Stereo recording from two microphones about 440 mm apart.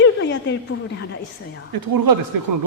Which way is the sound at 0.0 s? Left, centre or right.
Left.